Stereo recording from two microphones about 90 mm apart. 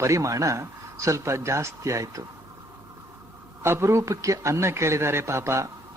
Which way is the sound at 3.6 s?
30° right (ahead or behind).